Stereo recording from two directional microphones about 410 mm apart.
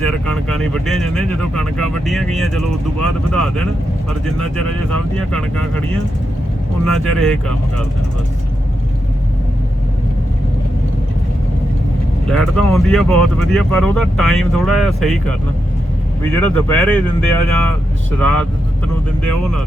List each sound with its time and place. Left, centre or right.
0.1 s speech: centre
6.8 s speech: centre
12.3 s speech: centre